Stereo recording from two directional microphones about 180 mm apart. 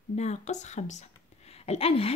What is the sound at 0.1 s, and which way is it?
A woman's voice, 40° left (ahead or behind).